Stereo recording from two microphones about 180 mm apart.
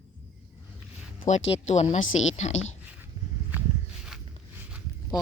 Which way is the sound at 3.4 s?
5° right (ahead or behind).